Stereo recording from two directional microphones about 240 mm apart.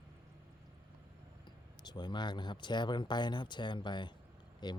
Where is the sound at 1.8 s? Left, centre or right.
Centre.